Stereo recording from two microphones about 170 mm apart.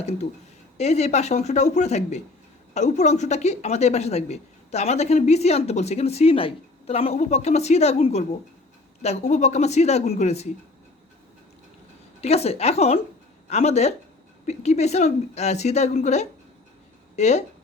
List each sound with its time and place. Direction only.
0.8 s speech: 40° left (ahead or behind)
12.2 s speech: 35° left (ahead or behind)